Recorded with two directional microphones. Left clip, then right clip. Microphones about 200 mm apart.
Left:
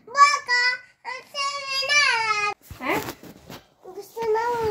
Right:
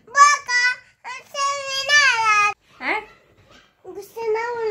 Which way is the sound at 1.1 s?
45° right (ahead or behind).